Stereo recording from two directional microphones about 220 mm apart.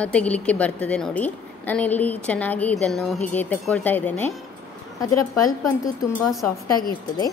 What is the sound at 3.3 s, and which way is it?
Music, 5° left (ahead or behind).